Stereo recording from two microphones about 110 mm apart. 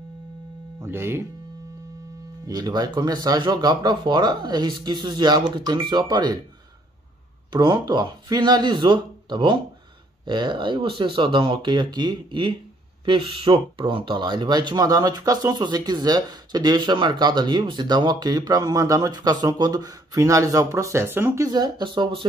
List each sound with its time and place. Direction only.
0.7 s speech: 20° right (ahead or behind)
2.4 s speech: 40° right (ahead or behind)
7.5 s speech: 45° right (ahead or behind); by 21.5 s 20° right (ahead or behind)
21.5 s speech: 40° right (ahead or behind)